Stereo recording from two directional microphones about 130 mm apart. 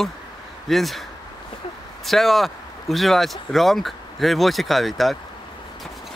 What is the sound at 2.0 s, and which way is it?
Speech, centre (ahead or behind).